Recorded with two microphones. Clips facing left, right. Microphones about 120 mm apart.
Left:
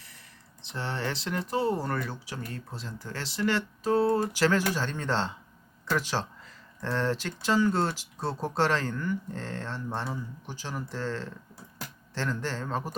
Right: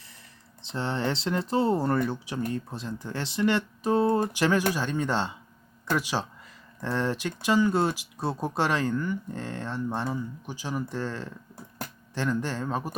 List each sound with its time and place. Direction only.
0.6 s speech: 25° right (ahead or behind)